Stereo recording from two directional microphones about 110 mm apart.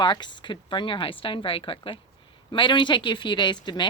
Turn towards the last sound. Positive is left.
turn(degrees=45)  # may be behind; listen again after turning